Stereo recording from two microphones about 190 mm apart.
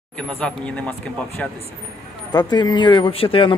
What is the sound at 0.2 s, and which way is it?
Speech, 5° left (ahead or behind).